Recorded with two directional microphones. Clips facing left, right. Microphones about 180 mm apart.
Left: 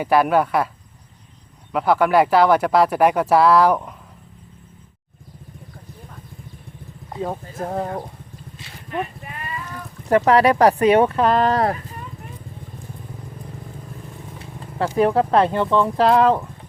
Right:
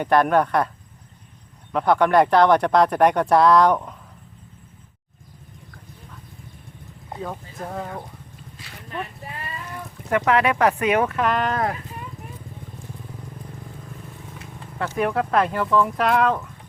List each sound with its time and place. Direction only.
0.0 s speech: 5° left (ahead or behind)
1.7 s speech: 5° left (ahead or behind)
7.5 s speech: 40° left (ahead or behind)
8.5 s a sound: 30° left (ahead or behind)
10.1 s speech: 35° left (ahead or behind)
14.9 s speech: 30° left (ahead or behind)